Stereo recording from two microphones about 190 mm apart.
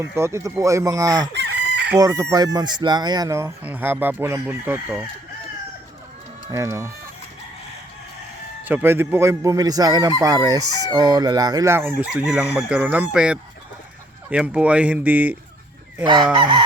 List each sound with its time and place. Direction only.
0.0 s speech: 15° right (ahead or behind)
1.3 s chicken: 60° right (ahead or behind)
2.0 s speech: 20° right (ahead or behind)
6.5 s speech: 15° right (ahead or behind)
8.6 s speech: 10° right (ahead or behind)
16.3 s speech: 25° right (ahead or behind)